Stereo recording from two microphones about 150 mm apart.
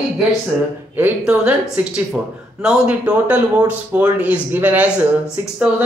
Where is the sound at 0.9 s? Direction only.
10° right (ahead or behind).